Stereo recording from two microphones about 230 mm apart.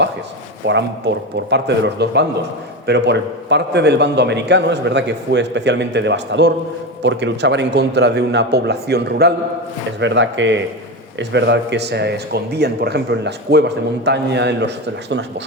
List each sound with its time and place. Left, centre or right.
0.7 s a man's voice: right